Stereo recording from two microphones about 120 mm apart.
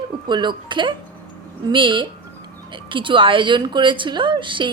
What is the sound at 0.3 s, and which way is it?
A woman's voice, 40° right (ahead or behind).